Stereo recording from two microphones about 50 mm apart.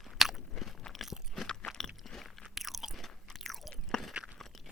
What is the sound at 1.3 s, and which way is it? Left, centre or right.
Crunch, centre.